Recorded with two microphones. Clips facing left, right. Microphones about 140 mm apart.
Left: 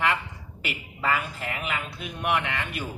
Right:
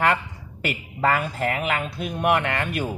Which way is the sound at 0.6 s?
50° right (ahead or behind).